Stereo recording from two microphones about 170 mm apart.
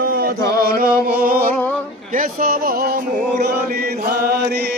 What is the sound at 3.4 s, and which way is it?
Chant, 60° right (ahead or behind).